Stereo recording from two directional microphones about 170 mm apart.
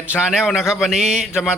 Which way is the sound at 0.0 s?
5° right (ahead or behind).